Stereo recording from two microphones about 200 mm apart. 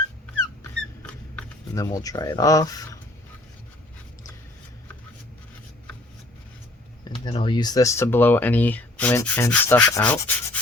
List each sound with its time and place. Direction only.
1.7 s speech: 20° left (ahead or behind)
7.3 s speech: 25° left (ahead or behind)